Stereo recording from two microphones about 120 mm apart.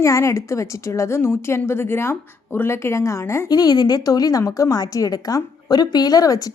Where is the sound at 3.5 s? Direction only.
35° left (ahead or behind).